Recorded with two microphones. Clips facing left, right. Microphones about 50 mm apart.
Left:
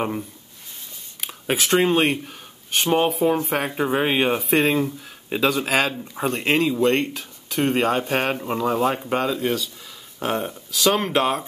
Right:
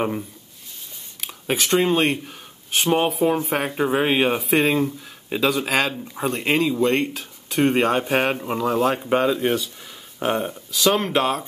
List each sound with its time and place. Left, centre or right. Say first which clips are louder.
1.2 s speech: even; centre
9.1 s speech: right 3 dB; right
10.1 s speech: right 2 dB; centre